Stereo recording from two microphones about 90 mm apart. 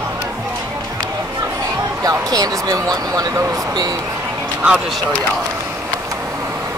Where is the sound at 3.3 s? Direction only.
30° right (ahead or behind).